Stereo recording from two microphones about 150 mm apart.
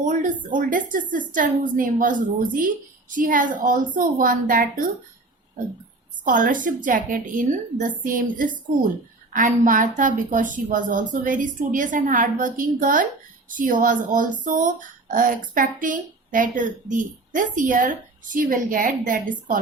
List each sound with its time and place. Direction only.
0.0 s a woman's voice: 60° right (ahead or behind)
6.2 s a woman's voice: 65° right (ahead or behind)